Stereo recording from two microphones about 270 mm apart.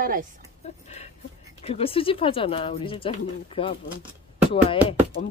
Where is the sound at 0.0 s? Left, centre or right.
Right.